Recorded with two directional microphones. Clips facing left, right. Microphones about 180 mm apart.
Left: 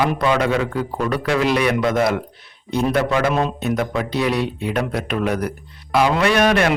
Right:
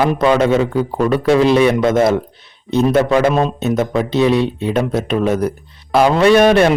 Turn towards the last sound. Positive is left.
turn(degrees=-30)  # may be behind; listen again after turning